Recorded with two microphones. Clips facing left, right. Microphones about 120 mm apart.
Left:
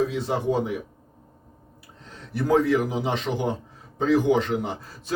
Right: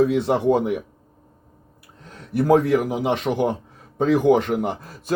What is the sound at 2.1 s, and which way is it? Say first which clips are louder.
A man's voice: right 4 dB; 60° right (ahead or behind).